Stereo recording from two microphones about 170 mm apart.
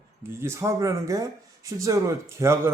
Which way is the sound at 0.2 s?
15° right (ahead or behind).